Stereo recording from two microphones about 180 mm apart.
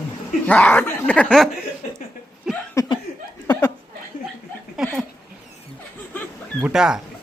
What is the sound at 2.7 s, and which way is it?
Laughter, 25° left (ahead or behind).